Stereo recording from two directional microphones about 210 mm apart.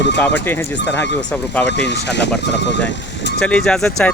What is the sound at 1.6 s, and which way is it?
Speech, 55° left (ahead or behind).